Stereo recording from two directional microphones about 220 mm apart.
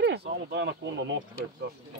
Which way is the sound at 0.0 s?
50° right (ahead or behind).